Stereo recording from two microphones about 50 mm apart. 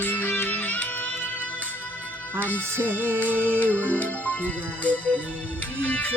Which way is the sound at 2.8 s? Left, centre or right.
Right.